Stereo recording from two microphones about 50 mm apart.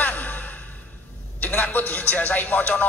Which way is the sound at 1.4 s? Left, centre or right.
Left.